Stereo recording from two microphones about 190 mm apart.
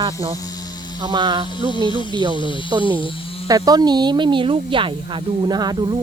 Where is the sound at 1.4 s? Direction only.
25° left (ahead or behind).